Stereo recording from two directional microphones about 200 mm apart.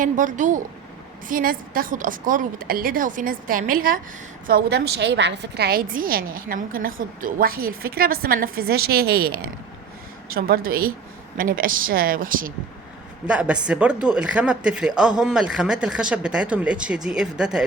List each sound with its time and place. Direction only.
0.0 s a woman's voice: 40° right (ahead or behind)
13.2 s speech: 5° right (ahead or behind)